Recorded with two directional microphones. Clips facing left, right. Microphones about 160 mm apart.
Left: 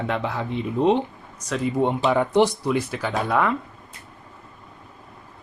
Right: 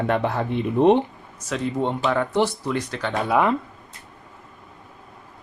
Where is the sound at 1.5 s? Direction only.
5° left (ahead or behind).